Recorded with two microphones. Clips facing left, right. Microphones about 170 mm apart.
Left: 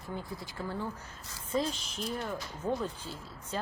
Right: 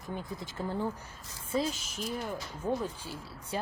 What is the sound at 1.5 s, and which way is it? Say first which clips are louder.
Speech: even; 5° right (ahead or behind).